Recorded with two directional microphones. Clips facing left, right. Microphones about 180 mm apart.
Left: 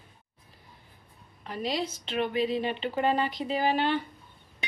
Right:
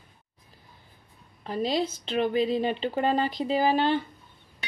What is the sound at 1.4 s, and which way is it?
Speech, 30° right (ahead or behind).